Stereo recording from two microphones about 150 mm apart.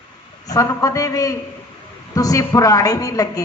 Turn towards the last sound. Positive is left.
turn(degrees=25)  # may be behind; listen again after turning